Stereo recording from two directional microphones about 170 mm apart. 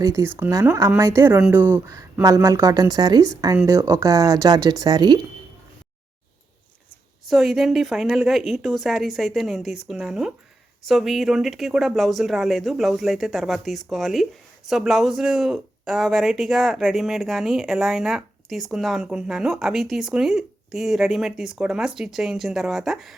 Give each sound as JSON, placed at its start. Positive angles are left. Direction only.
{"t": 0.0, "sound": "speech", "side_deg": -15}
{"t": 7.3, "sound": "speech", "side_deg": 0}